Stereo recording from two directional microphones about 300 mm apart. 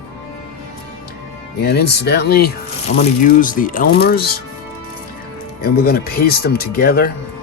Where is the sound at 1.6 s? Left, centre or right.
Left.